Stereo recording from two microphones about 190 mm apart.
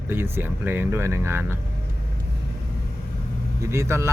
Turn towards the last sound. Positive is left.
turn(degrees=-15)  # may be behind; listen again after turning